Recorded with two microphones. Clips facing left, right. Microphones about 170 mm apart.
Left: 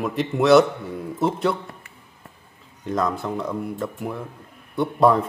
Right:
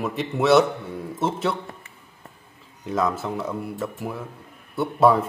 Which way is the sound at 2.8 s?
5° right (ahead or behind).